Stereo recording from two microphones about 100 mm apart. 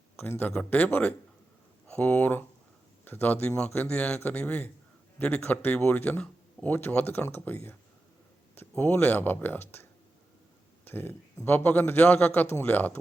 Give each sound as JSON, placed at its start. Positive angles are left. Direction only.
{"t": 0.2, "sound": "a man's voice", "side_deg": 20}
{"t": 10.8, "sound": "a man's voice", "side_deg": 20}